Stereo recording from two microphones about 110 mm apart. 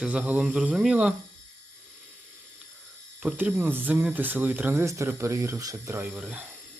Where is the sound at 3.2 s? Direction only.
15° right (ahead or behind).